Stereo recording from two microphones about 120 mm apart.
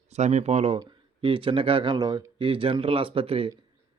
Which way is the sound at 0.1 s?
75° right (ahead or behind).